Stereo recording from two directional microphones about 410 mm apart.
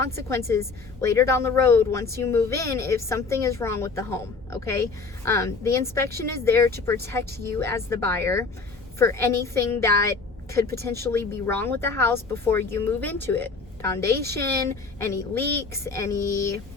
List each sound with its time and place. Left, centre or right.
0.2 s a woman's voice: centre
14.3 s a woman's voice: right
14.9 s a woman's voice: centre